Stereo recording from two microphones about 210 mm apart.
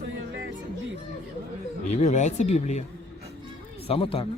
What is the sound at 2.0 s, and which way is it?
Speech, 35° left (ahead or behind).